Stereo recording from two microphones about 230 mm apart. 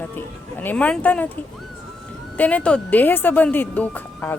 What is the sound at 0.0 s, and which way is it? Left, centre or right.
Speech, centre.